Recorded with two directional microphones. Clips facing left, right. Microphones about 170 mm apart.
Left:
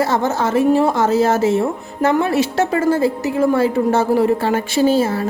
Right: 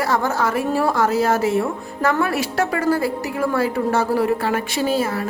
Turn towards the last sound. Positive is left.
turn(degrees=25)  # may be behind; listen again after turning